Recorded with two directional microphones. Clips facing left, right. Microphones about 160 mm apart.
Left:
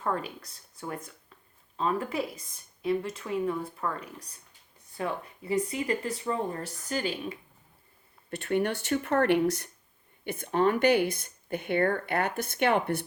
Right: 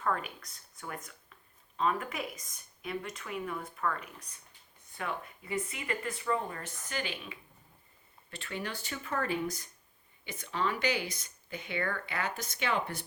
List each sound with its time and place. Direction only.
0.0 s speech: 30° left (ahead or behind)
8.4 s speech: 60° left (ahead or behind)
10.2 s speech: 55° left (ahead or behind)